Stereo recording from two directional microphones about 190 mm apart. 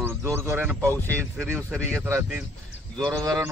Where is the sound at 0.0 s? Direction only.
15° right (ahead or behind).